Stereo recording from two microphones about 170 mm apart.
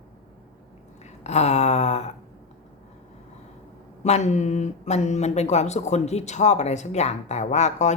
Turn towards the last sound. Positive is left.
turn(degrees=45)  # may be behind; listen again after turning